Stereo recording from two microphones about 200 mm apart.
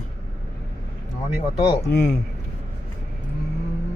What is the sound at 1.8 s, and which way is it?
Speech, 5° left (ahead or behind).